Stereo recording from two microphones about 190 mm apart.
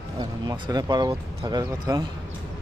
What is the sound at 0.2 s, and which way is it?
Speech, 20° right (ahead or behind).